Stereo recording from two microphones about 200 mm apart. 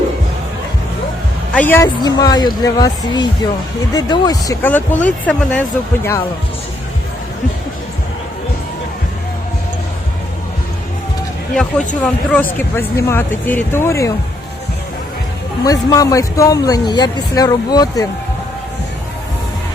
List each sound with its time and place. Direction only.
1.5 s speech: 10° left (ahead or behind)
12.0 s speech: 10° left (ahead or behind)
15.6 s speech: 15° left (ahead or behind)